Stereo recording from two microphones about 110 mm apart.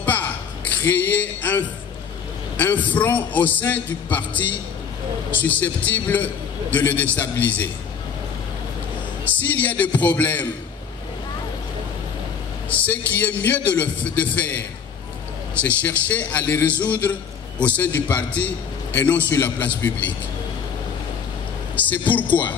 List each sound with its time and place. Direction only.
0.0 s a sound: 15° left (ahead or behind)
2.5 s a man's voice: 15° left (ahead or behind)
9.2 s a man's voice: 15° left (ahead or behind)
12.6 s a man's voice: 15° left (ahead or behind)
15.6 s a man's voice: 15° left (ahead or behind)
21.7 s a man's voice: 15° left (ahead or behind)